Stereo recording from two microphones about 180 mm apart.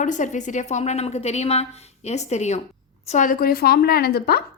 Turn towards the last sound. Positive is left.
turn(degrees=60)  # may be behind; listen again after turning